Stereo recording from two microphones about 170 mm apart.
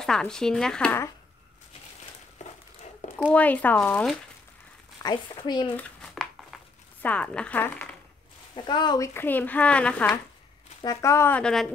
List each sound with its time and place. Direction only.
0.0 s speech: 5° left (ahead or behind)
3.3 s speech: 10° left (ahead or behind)
5.0 s a woman's voice: 25° left (ahead or behind)
5.8 s a sound: 5° left (ahead or behind)
8.5 s speech: 25° left (ahead or behind); by 10.2 s 10° left (ahead or behind)
10.8 s speech: 20° left (ahead or behind); by 11.7 s 5° left (ahead or behind)